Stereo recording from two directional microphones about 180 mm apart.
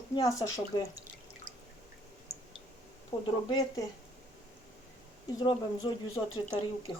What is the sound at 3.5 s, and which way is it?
Speech, 20° left (ahead or behind).